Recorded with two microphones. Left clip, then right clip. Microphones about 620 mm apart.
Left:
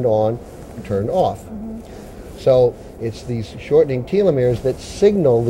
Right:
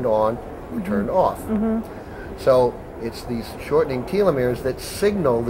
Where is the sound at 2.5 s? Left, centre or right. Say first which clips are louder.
Left 2 dB; left.